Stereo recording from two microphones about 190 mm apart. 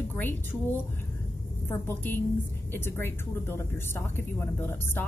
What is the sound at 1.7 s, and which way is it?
A woman's voice, 10° left (ahead or behind).